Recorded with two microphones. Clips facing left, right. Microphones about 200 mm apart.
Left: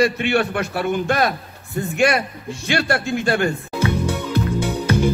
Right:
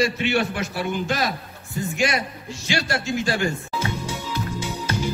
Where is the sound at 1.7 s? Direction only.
60° left (ahead or behind).